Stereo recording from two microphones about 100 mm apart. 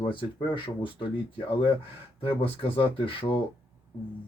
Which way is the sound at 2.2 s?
70° left (ahead or behind).